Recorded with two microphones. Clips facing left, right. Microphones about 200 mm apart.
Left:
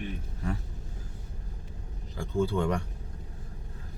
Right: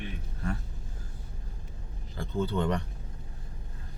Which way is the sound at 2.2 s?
10° left (ahead or behind).